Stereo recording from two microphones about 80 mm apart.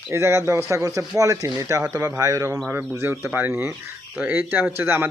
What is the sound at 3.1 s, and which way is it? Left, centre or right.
Speech, right.